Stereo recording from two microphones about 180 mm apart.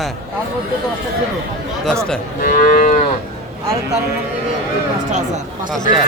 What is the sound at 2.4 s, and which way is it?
Livestock, 50° left (ahead or behind).